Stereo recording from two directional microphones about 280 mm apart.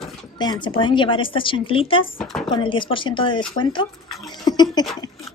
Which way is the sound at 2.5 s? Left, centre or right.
Centre.